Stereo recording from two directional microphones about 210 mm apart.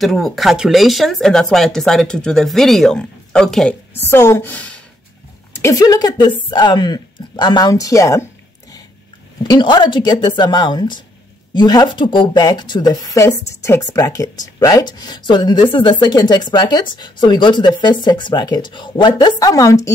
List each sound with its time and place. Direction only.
0.0 s a woman's voice: centre (ahead or behind)
9.4 s a woman's voice: 20° left (ahead or behind)